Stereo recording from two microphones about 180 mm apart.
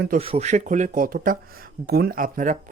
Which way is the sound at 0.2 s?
35° right (ahead or behind).